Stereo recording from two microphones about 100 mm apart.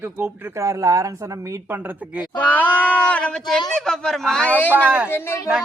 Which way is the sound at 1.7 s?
20° right (ahead or behind).